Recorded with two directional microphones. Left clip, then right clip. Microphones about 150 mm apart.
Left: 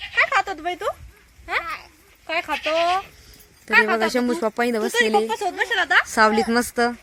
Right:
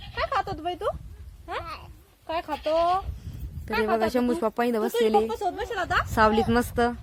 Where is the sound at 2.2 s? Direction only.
20° right (ahead or behind).